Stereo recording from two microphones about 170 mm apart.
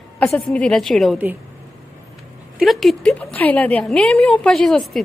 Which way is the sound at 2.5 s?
Centre (ahead or behind).